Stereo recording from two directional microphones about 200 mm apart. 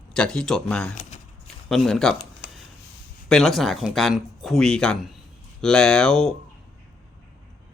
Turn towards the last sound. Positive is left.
turn(degrees=0)  # may be behind; listen again after turning